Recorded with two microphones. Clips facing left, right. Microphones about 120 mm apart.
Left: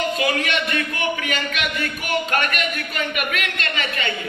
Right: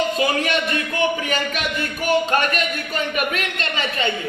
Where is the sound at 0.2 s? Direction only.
35° right (ahead or behind).